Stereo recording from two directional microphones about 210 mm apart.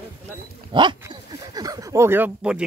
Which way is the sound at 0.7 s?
25° right (ahead or behind).